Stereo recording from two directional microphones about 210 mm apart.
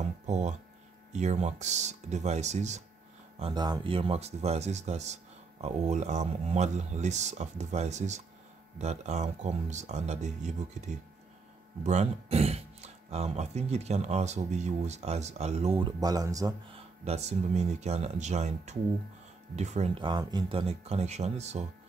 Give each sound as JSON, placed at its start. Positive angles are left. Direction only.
{"t": 0.3, "sound": "speech", "side_deg": -35}
{"t": 3.3, "sound": "speech", "side_deg": -25}
{"t": 16.7, "sound": "speech", "side_deg": -30}